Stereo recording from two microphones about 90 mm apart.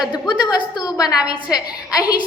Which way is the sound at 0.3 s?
50° left (ahead or behind).